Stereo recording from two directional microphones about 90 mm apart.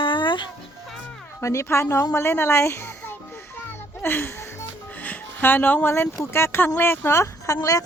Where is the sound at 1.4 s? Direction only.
35° left (ahead or behind).